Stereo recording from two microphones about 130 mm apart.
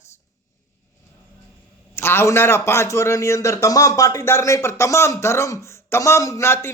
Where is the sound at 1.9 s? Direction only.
20° left (ahead or behind).